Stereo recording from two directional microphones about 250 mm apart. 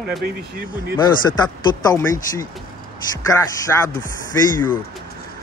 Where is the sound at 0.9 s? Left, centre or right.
Centre.